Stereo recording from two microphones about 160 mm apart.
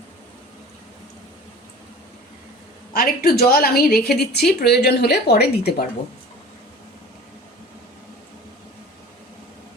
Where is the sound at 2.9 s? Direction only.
70° left (ahead or behind).